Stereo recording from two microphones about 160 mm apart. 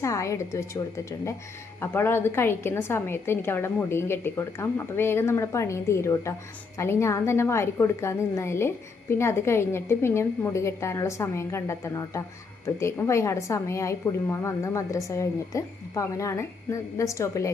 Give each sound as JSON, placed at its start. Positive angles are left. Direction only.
{"t": 0.0, "sound": "a woman's voice", "side_deg": 20}